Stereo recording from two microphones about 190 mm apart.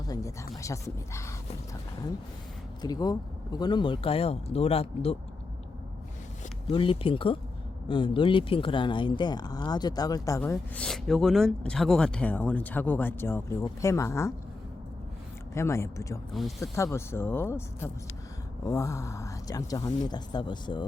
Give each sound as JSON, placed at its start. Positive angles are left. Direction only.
{"t": 0.1, "sound": "speech", "side_deg": 15}
{"t": 2.8, "sound": "speech", "side_deg": 20}
{"t": 6.7, "sound": "speech", "side_deg": 25}
{"t": 15.5, "sound": "speech", "side_deg": 15}
{"t": 16.3, "sound": "speech", "side_deg": 0}
{"t": 16.7, "sound": "speech", "side_deg": 15}